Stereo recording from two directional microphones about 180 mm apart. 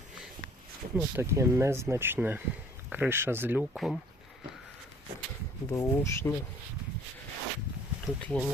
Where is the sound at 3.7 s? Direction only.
Centre (ahead or behind).